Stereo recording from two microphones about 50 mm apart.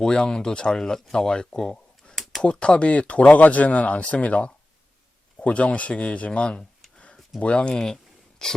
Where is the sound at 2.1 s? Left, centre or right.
Centre.